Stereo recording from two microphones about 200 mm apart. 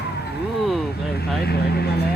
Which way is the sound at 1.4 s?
50° left (ahead or behind).